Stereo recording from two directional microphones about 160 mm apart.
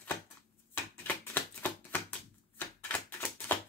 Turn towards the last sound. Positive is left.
turn(degrees=10)  # may be behind; listen again after turning